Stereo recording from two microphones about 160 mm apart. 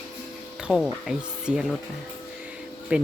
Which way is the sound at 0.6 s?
Centre (ahead or behind).